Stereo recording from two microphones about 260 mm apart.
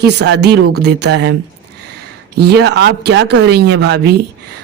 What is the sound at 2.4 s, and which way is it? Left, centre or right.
Speech, right.